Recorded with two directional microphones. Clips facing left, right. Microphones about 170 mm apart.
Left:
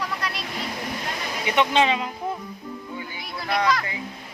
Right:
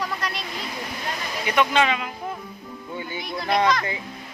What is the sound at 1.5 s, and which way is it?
Speech, 25° left (ahead or behind).